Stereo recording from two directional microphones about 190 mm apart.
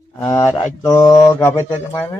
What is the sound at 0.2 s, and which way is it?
Speech, 10° left (ahead or behind).